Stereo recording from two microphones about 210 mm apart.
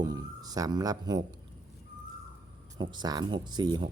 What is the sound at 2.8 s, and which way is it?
Speech, 20° right (ahead or behind).